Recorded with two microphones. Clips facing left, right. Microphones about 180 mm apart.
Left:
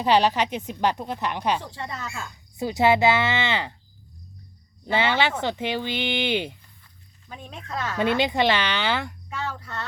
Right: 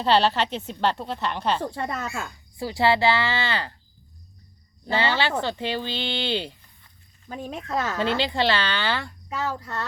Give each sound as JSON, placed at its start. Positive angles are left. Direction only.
{"t": 0.0, "sound": "a woman's voice", "side_deg": 15}
{"t": 1.7, "sound": "speech", "side_deg": -50}
{"t": 2.6, "sound": "speech", "side_deg": 20}
{"t": 4.9, "sound": "a woman's voice", "side_deg": 20}
{"t": 7.3, "sound": "speech", "side_deg": -40}
{"t": 7.9, "sound": "a woman's voice", "side_deg": 15}
{"t": 9.4, "sound": "speech", "side_deg": -40}